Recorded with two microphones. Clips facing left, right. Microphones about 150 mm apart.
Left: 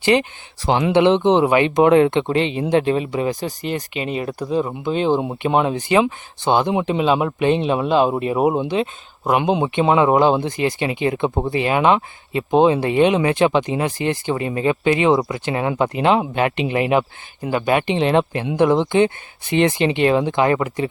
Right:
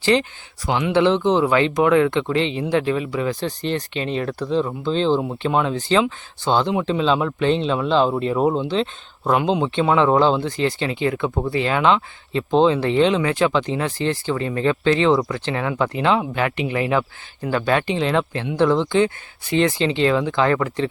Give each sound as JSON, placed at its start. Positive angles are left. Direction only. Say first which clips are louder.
{"t": 0.0, "sound": "speech", "louder": "left 2 dB", "side_deg": 15}
{"t": 0.6, "sound": "speech", "louder": "left 3 dB", "side_deg": 30}